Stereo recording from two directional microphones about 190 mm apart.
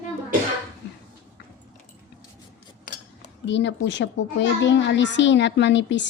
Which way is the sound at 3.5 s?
70° left (ahead or behind).